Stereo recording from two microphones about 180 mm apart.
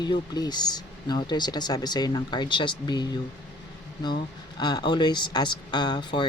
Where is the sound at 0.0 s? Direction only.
25° left (ahead or behind).